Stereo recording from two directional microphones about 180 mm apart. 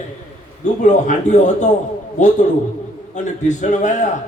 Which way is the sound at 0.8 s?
40° left (ahead or behind).